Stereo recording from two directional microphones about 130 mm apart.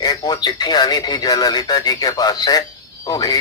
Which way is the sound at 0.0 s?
30° left (ahead or behind).